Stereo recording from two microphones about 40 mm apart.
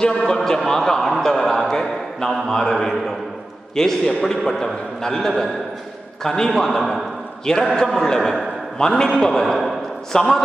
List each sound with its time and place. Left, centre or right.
0.0 s a man's voice: centre
2.7 s a man's voice: centre
10.1 s a man's voice: centre